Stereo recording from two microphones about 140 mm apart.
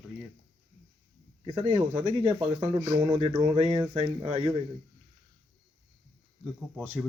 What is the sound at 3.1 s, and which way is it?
Speech, 40° right (ahead or behind).